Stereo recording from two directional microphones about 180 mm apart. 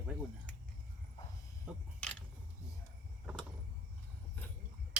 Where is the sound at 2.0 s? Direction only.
5° left (ahead or behind).